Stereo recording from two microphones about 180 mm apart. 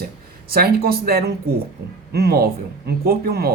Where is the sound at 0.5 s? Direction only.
60° right (ahead or behind).